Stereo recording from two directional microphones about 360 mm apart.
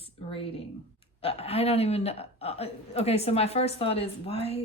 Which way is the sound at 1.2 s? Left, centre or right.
Centre.